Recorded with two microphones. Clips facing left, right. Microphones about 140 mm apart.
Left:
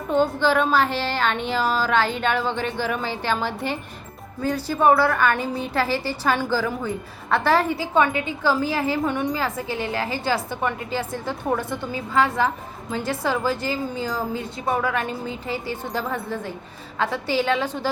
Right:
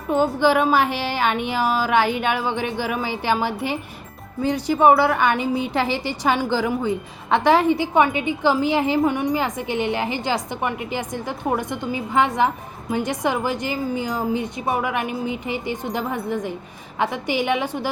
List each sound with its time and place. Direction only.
0.1 s a woman's voice: 10° right (ahead or behind)